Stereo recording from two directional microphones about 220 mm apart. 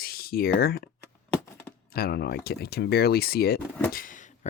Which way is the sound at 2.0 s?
45° left (ahead or behind).